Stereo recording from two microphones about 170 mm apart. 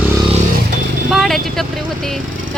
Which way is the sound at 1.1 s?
Centre (ahead or behind).